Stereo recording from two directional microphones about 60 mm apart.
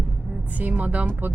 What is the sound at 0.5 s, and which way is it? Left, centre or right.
Speech, right.